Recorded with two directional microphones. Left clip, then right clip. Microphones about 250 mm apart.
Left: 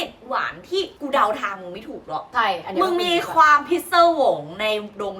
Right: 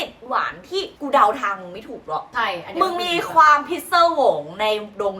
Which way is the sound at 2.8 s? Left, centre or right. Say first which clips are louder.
Even; centre.